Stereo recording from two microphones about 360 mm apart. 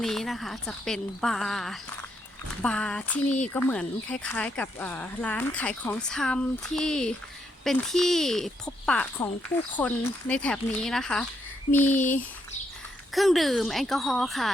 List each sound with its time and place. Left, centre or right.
0.0 s speech: centre
11.9 s a sound: left
13.1 s speech: centre